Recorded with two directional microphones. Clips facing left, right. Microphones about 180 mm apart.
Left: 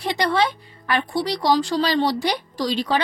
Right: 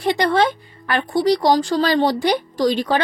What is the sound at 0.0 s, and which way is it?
Speech, 50° right (ahead or behind).